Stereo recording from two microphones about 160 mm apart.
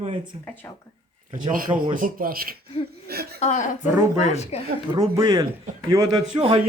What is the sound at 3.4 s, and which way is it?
Speech, 50° left (ahead or behind).